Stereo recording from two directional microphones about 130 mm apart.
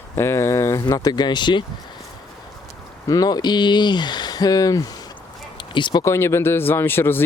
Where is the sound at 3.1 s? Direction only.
30° left (ahead or behind).